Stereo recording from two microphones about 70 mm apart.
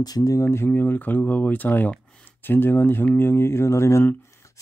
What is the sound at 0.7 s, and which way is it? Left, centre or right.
Speech, left.